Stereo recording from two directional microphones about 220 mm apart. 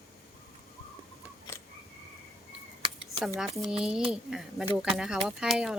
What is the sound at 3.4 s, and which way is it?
Speech, centre (ahead or behind).